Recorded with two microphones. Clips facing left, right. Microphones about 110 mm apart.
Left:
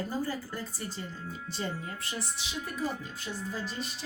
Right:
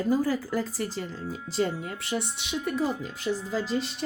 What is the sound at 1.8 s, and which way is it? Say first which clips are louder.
Speech: right 7 dB; 70° right (ahead or behind).